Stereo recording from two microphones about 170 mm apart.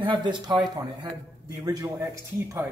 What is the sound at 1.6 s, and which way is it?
Speech, 20° right (ahead or behind).